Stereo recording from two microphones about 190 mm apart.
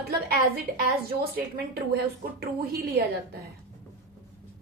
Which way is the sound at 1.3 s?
55° right (ahead or behind).